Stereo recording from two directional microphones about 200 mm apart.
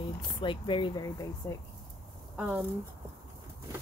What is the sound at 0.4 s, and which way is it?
A woman's voice, 25° left (ahead or behind).